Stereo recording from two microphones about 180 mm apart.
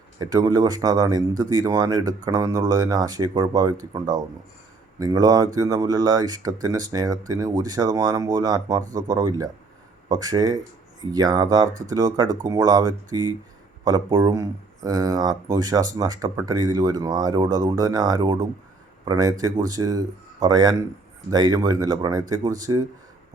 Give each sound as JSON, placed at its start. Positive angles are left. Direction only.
{"t": 0.2, "sound": "speech", "side_deg": -20}